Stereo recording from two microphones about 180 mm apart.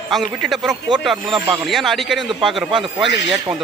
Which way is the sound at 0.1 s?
Centre (ahead or behind).